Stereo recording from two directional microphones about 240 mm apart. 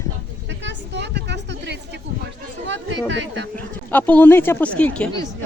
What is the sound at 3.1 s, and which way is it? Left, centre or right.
Speech, right.